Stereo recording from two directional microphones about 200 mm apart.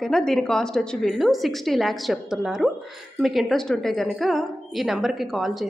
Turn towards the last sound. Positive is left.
turn(degrees=0)  # may be behind; listen again after turning